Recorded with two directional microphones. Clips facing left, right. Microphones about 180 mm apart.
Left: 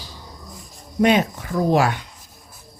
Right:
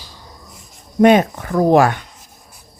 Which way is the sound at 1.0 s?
50° right (ahead or behind).